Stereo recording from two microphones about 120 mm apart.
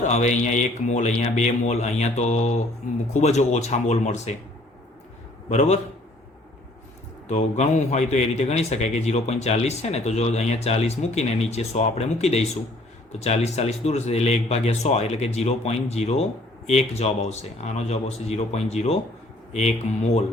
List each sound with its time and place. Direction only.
0.0 s a man's voice: 75° left (ahead or behind)
5.5 s a man's voice: 70° left (ahead or behind)
7.3 s a man's voice: 75° left (ahead or behind)
19.9 s speech: 90° left